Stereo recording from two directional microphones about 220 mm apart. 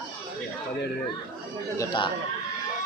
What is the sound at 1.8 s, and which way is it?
Speech, 20° left (ahead or behind).